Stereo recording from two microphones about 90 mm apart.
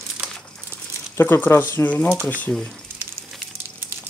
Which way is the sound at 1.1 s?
25° left (ahead or behind).